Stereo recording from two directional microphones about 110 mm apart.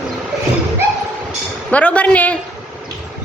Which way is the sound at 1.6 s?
10° left (ahead or behind).